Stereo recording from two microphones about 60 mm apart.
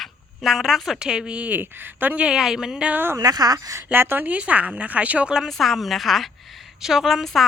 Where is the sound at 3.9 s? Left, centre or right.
Right.